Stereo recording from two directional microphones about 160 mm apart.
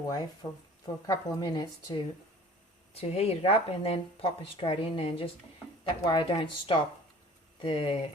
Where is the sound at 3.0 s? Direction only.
40° left (ahead or behind).